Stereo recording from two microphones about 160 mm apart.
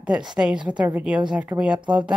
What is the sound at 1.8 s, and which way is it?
Speech, 30° right (ahead or behind).